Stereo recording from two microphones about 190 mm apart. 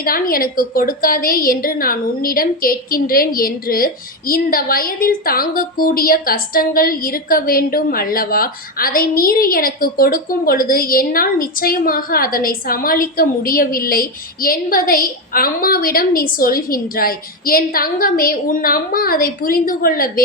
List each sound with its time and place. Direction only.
0.0 s a woman's voice: 50° left (ahead or behind)